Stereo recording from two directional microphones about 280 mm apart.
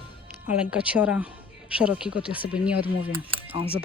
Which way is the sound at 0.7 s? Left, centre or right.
Centre.